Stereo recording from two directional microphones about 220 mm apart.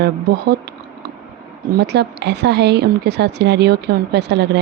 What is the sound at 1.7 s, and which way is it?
Speech, 50° right (ahead or behind).